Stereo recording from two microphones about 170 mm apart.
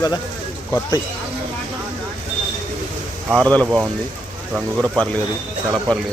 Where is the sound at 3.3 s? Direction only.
5° left (ahead or behind).